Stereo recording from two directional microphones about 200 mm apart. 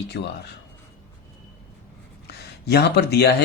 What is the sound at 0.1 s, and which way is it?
Speech, 60° left (ahead or behind).